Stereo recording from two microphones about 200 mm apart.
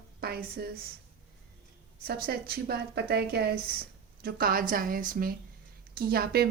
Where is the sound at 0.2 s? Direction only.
50° right (ahead or behind).